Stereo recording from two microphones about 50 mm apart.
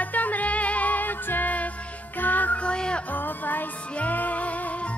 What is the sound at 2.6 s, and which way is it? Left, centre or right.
Music, centre.